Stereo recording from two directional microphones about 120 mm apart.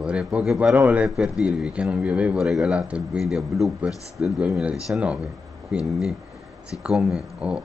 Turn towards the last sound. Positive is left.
turn(degrees=-5)  # may be behind; listen again after turning